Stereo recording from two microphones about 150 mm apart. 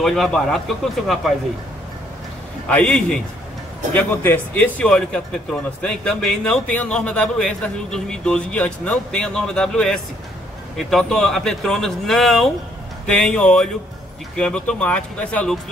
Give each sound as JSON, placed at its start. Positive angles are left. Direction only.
{"t": 0.0, "sound": "speech", "side_deg": 0}
{"t": 2.7, "sound": "speech", "side_deg": 10}